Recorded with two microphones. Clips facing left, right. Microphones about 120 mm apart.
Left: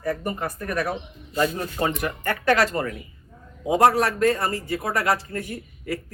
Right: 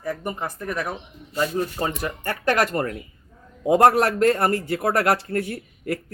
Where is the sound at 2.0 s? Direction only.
40° right (ahead or behind).